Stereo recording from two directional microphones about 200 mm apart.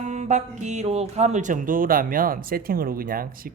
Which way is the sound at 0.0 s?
35° right (ahead or behind).